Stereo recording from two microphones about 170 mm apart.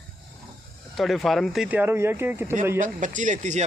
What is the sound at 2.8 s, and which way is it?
Speech, 50° right (ahead or behind).